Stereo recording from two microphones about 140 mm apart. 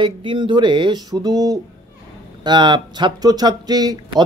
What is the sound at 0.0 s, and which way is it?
Speech, 35° right (ahead or behind).